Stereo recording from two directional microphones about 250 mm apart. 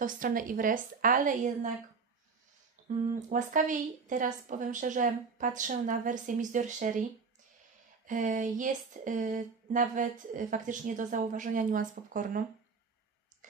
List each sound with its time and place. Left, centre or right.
0.0 s speech: right
3.1 s speech: right
8.1 s speech: right